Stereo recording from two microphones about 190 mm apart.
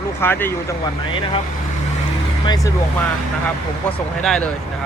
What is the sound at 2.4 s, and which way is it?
Speech, 20° left (ahead or behind).